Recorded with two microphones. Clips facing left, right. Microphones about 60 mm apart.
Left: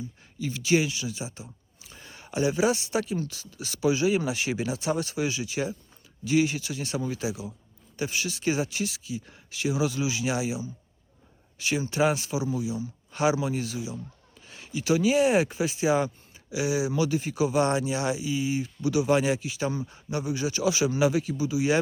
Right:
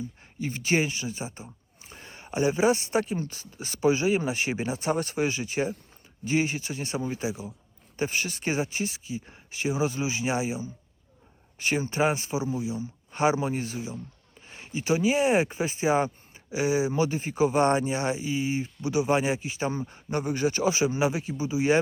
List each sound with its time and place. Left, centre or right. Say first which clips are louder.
0.0 s speech: right 1 dB; right